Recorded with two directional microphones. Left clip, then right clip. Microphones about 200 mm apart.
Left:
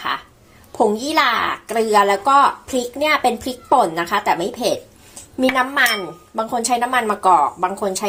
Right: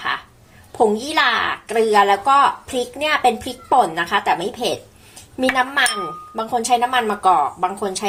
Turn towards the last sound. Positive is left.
turn(degrees=5)  # may be behind; listen again after turning